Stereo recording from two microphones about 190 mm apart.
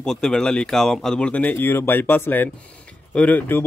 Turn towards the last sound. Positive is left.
turn(degrees=10)  # may be behind; listen again after turning